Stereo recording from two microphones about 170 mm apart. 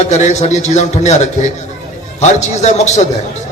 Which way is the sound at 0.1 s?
45° left (ahead or behind).